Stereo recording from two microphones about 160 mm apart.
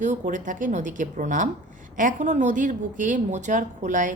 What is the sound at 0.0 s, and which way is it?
A woman's voice, 50° right (ahead or behind).